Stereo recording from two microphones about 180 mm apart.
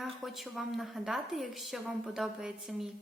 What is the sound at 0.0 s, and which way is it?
A woman's voice, centre (ahead or behind).